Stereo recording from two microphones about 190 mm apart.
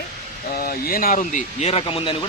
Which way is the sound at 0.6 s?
50° left (ahead or behind).